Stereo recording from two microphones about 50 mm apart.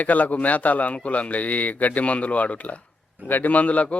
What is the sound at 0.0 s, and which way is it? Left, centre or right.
A man's voice, left.